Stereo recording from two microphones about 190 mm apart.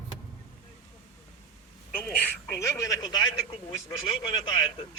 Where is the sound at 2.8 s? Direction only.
20° left (ahead or behind).